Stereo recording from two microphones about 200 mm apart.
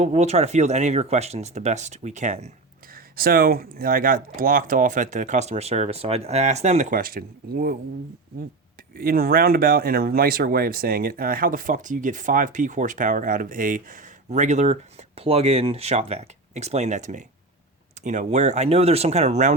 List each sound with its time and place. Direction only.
0.0 s speech: 35° right (ahead or behind)
2.9 s speech: 45° right (ahead or behind)
9.0 s speech: 50° right (ahead or behind)